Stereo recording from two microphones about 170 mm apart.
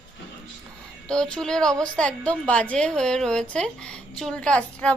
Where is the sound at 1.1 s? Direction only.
5° left (ahead or behind).